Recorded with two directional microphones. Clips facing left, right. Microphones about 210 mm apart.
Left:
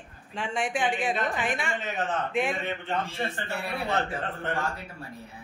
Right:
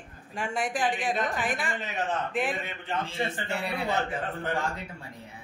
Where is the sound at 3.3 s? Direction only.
15° right (ahead or behind).